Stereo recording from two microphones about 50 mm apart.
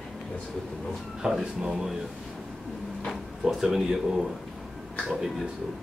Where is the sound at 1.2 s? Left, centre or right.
Centre.